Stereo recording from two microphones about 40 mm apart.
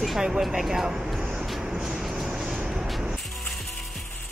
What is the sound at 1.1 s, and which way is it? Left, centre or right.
Vehicle, centre.